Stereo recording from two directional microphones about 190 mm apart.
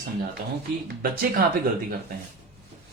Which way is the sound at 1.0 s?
50° right (ahead or behind).